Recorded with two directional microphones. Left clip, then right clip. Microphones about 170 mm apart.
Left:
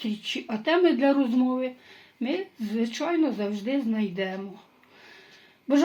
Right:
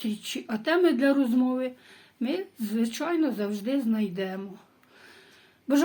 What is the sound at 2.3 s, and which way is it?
Speech, 25° right (ahead or behind).